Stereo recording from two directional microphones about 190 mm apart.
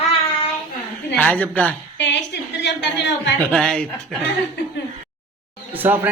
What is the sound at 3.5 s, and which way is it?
Speech, 5° left (ahead or behind).